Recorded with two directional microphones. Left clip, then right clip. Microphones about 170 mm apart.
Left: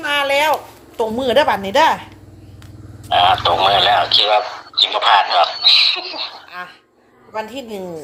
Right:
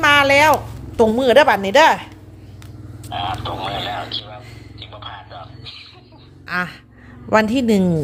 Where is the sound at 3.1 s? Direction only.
80° left.